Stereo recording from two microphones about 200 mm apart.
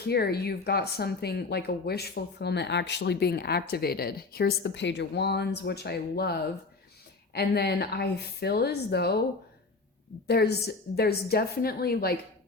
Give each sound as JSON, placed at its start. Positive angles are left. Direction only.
{"t": 0.1, "sound": "a woman's voice", "side_deg": 50}
{"t": 10.2, "sound": "a woman's voice", "side_deg": 55}